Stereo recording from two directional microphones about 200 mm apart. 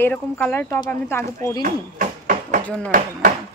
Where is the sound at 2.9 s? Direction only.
40° right (ahead or behind).